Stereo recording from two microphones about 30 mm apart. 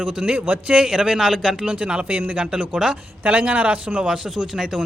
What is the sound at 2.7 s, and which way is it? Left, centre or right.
Speech, right.